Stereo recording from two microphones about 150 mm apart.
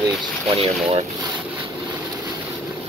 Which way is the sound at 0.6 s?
40° right (ahead or behind).